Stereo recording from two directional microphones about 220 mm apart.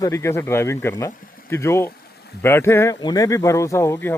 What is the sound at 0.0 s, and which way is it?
Speech, 15° left (ahead or behind).